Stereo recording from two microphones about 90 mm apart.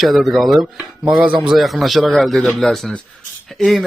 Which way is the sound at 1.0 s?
15° right (ahead or behind).